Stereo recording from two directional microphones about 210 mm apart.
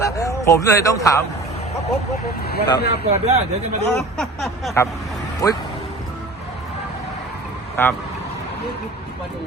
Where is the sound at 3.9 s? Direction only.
Centre (ahead or behind).